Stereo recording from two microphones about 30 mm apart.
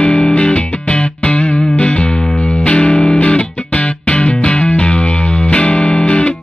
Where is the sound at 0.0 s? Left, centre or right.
Left.